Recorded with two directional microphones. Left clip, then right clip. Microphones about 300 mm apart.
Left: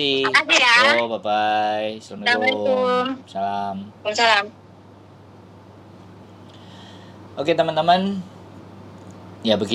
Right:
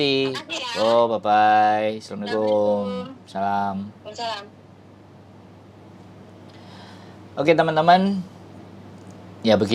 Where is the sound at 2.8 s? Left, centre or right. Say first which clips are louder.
Left 9 dB; left.